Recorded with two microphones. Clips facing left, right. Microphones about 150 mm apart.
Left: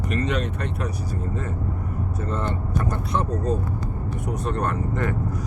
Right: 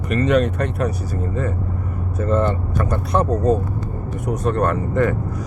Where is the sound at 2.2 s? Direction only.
55° right (ahead or behind); by 5.1 s 75° right (ahead or behind).